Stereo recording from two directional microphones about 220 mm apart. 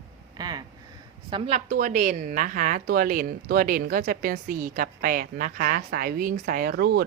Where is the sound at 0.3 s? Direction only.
20° right (ahead or behind).